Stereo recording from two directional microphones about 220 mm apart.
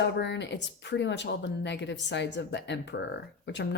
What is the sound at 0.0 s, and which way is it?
Speech, 50° left (ahead or behind).